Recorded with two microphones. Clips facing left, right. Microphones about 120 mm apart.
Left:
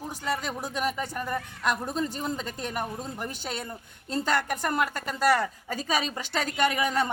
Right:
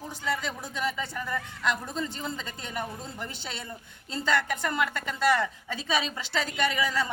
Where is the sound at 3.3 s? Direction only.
50° left (ahead or behind).